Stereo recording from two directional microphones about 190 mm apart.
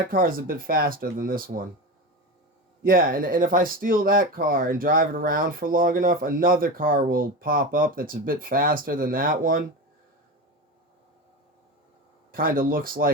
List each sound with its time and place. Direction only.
0.1 s speech: 50° right (ahead or behind)
2.8 s speech: 50° right (ahead or behind)
12.3 s speech: 50° right (ahead or behind)